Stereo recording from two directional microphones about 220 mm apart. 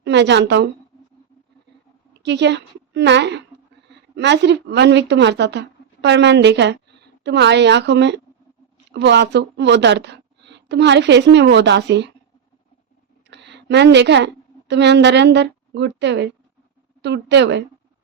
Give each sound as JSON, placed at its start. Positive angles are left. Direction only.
{"t": 0.0, "sound": "a woman's voice", "side_deg": -50}
{"t": 2.2, "sound": "a woman's voice", "side_deg": -50}
{"t": 13.3, "sound": "a sound", "side_deg": -50}
{"t": 14.7, "sound": "a woman's voice", "side_deg": -50}